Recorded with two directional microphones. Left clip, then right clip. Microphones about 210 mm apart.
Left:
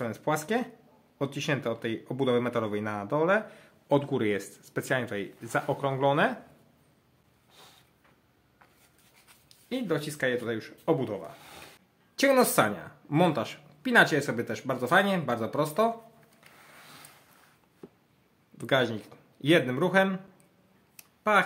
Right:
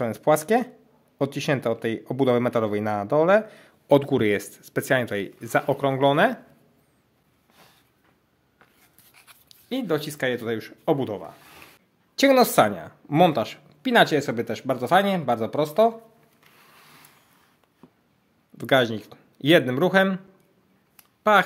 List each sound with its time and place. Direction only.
0.0 s speech: 40° right (ahead or behind)
9.5 s speech: 45° right (ahead or behind)
18.6 s speech: 40° right (ahead or behind)
21.3 s speech: 40° right (ahead or behind)